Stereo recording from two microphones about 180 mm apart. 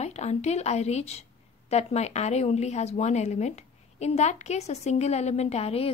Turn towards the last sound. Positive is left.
turn(degrees=35)  # may be behind; listen again after turning